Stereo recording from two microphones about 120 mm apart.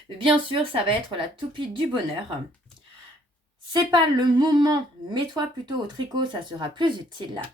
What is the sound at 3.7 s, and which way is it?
Speech, 35° right (ahead or behind).